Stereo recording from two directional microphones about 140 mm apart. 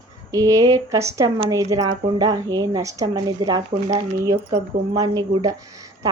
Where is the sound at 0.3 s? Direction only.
25° right (ahead or behind).